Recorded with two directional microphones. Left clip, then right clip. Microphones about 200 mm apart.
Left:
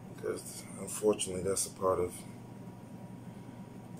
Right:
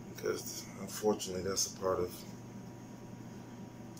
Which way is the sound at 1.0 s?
15° left (ahead or behind).